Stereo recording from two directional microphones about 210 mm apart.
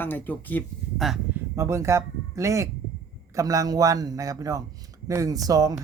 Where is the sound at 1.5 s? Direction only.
15° right (ahead or behind).